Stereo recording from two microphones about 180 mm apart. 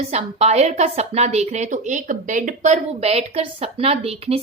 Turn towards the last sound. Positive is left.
turn(degrees=-35)  # may be behind; listen again after turning